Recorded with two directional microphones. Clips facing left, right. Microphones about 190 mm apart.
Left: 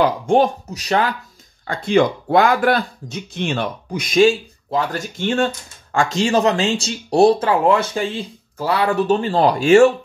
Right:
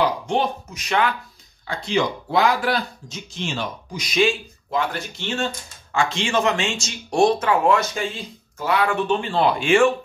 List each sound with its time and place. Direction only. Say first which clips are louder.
0.0 s speech: left 6 dB; 50° left (ahead or behind)
1.7 s speech: left 6 dB; 55° left (ahead or behind)